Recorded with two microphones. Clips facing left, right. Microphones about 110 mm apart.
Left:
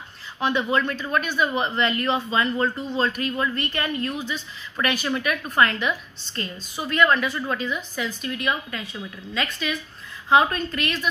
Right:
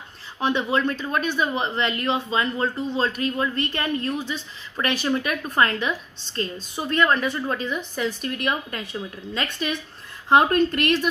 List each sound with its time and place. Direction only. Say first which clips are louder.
0.4 s a man's voice: even; 25° right (ahead or behind); by 10.9 s 45° right (ahead or behind)